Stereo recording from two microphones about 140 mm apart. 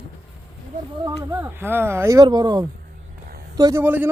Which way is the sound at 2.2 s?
30° right (ahead or behind).